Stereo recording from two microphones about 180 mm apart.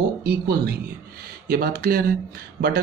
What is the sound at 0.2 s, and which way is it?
Speech, 65° right (ahead or behind).